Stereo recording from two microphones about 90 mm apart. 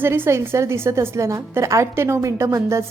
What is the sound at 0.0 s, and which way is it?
A woman's voice, 25° right (ahead or behind).